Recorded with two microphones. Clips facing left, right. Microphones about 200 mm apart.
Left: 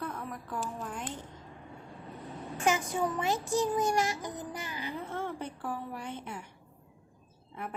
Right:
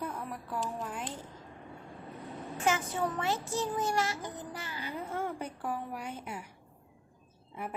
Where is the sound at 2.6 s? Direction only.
15° left (ahead or behind).